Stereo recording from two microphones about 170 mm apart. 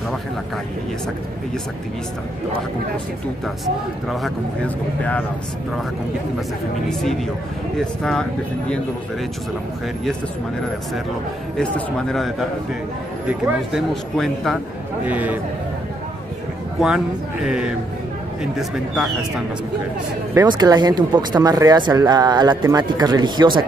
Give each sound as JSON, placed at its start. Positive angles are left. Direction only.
{"t": 6.9, "sound": "speech", "side_deg": 0}
{"t": 11.5, "sound": "speech", "side_deg": 5}
{"t": 13.7, "sound": "speech", "side_deg": 0}
{"t": 15.0, "sound": "a man's voice", "side_deg": -10}
{"t": 16.8, "sound": "speech", "side_deg": -5}
{"t": 20.3, "sound": "speech", "side_deg": -25}